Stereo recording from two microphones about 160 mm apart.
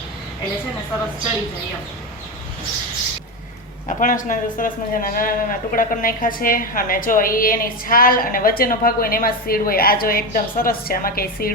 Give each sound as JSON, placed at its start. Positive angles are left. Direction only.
{"t": 3.8, "sound": "a man's voice", "side_deg": 55}